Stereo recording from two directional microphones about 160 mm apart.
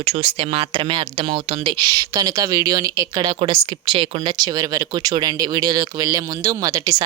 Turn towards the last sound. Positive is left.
turn(degrees=-20)  # may be behind; listen again after turning